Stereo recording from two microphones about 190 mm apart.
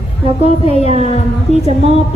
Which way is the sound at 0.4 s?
35° left (ahead or behind).